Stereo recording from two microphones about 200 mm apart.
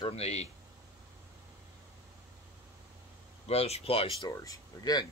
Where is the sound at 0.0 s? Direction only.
30° left (ahead or behind).